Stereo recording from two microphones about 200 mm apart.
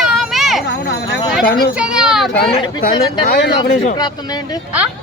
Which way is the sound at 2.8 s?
45° left (ahead or behind).